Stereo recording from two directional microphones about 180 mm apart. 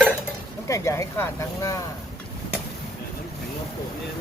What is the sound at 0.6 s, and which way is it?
Speech, 15° left (ahead or behind).